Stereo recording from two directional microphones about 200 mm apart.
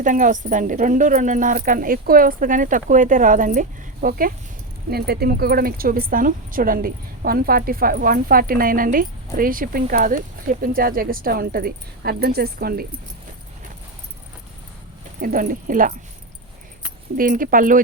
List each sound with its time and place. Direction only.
0.0 s speech: 40° right (ahead or behind)
15.2 s speech: 45° right (ahead or behind)
17.2 s speech: 45° right (ahead or behind)